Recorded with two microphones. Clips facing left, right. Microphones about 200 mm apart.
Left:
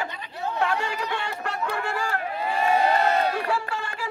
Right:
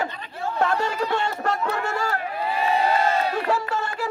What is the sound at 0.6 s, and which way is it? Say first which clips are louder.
Run: right 4 dB; 40° right (ahead or behind).